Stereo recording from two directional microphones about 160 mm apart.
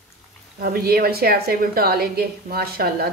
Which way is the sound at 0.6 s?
70° right (ahead or behind).